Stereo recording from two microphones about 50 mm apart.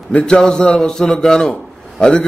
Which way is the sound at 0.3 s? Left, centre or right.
Centre.